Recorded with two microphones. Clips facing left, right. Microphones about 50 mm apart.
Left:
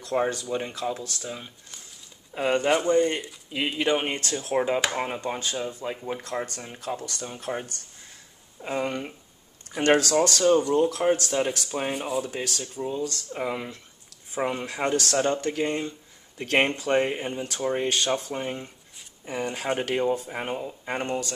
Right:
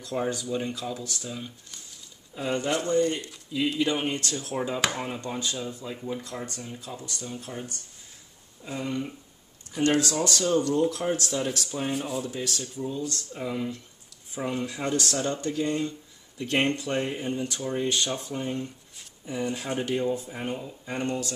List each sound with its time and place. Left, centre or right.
0.0 s speech: left
2.7 s speech: left
3.5 s speech: left
6.2 s speech: left
10.1 s speech: left
11.9 s speech: centre
12.3 s speech: left
19.2 s speech: left
20.0 s speech: left